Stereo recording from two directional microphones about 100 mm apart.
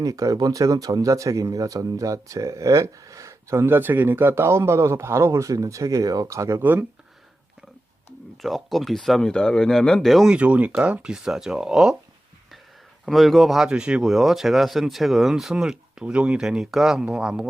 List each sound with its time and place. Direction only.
0.0 s speech: 35° right (ahead or behind)
6.6 s speech: 20° right (ahead or behind)
8.4 s speech: centre (ahead or behind)
10.3 s speech: 10° right (ahead or behind)
13.1 s speech: centre (ahead or behind)